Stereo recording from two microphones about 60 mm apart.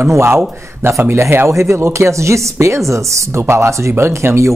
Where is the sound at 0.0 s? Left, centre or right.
Right.